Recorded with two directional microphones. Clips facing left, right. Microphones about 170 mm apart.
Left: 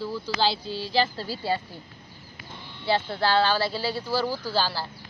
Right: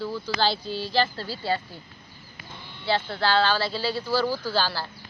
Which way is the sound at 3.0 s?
20° left (ahead or behind).